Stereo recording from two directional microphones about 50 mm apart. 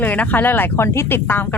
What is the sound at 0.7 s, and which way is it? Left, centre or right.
Speech, left.